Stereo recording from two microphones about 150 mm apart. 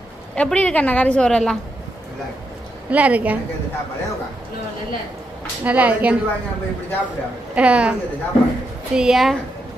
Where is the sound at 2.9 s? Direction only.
10° right (ahead or behind).